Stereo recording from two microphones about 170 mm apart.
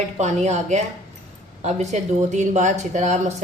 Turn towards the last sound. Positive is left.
turn(degrees=-45)  # may be behind; listen again after turning